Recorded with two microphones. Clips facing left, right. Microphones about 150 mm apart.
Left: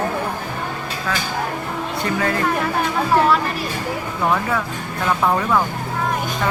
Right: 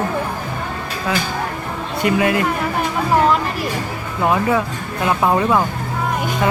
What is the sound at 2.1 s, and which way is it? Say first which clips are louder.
Speech: right 6 dB; 15° right (ahead or behind).